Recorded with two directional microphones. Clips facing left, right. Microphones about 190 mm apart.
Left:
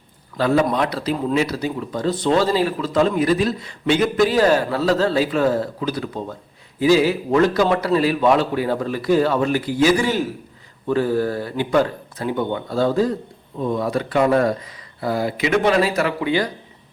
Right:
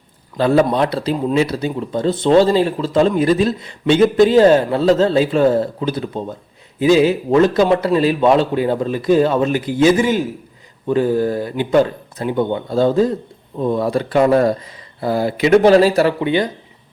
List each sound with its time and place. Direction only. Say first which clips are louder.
0.3 s speech: right 4 dB; 30° right (ahead or behind)